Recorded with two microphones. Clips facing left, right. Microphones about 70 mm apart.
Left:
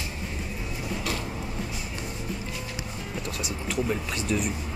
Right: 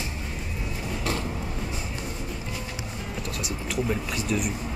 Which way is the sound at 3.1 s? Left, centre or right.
Centre.